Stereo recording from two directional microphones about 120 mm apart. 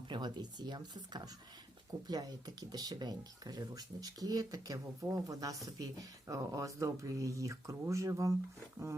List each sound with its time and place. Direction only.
0.1 s speech: 35° right (ahead or behind)